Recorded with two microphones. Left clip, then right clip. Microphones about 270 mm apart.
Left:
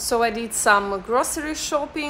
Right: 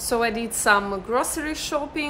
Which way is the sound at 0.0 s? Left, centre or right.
Centre.